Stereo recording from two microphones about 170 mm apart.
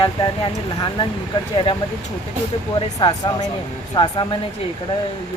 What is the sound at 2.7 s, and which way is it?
Speech, 30° left (ahead or behind).